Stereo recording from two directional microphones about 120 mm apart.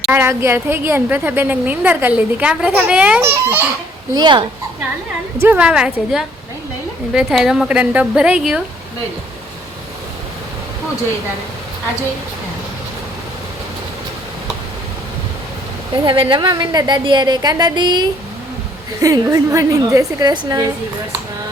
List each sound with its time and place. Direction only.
0.1 s a woman's voice: 20° right (ahead or behind)
3.2 s a woman's voice: 20° right (ahead or behind)
4.1 s a woman's voice: 40° right (ahead or behind)
5.4 s a woman's voice: 15° right (ahead or behind)
16.0 s a woman's voice: 45° right (ahead or behind)
18.9 s a woman's voice: 25° right (ahead or behind)